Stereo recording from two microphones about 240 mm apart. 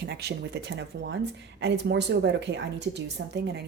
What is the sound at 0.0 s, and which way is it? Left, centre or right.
Speech, right.